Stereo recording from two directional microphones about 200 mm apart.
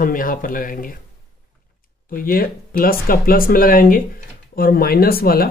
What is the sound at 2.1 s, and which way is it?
Speech, 45° left (ahead or behind).